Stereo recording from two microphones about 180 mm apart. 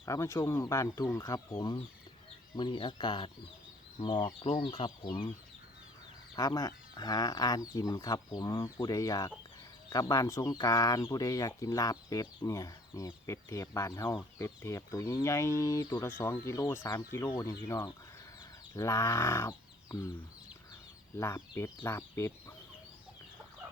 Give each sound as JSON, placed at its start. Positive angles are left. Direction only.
{"t": 0.0, "sound": "speech", "side_deg": 15}
{"t": 6.3, "sound": "speech", "side_deg": 20}
{"t": 21.2, "sound": "speech", "side_deg": 15}